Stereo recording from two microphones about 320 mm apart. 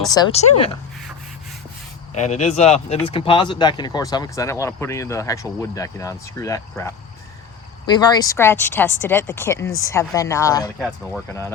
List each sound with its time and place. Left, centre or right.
0.1 s speech: centre
2.1 s speech: left
10.8 s speech: centre